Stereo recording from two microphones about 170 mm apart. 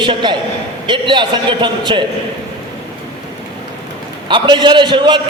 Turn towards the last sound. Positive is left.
turn(degrees=-30)  # may be behind; listen again after turning